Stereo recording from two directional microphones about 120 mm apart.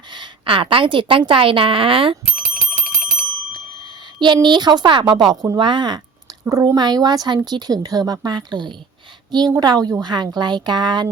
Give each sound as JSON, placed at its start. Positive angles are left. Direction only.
{"t": 0.1, "sound": "a woman's voice", "side_deg": -45}
{"t": 2.3, "sound": "bicycle bell", "side_deg": -5}
{"t": 4.4, "sound": "a woman's voice", "side_deg": -35}
{"t": 6.4, "sound": "a woman's voice", "side_deg": -25}